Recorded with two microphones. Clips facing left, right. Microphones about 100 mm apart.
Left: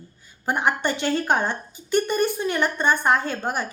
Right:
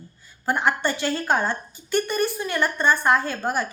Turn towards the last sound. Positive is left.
turn(degrees=20)  # may be behind; listen again after turning